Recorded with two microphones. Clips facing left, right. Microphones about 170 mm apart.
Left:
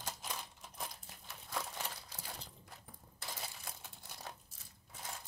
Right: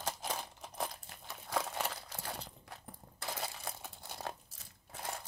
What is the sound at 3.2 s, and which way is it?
Coin, 65° right (ahead or behind).